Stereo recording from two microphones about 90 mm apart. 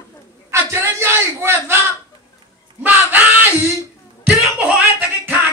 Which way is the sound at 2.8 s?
20° right (ahead or behind).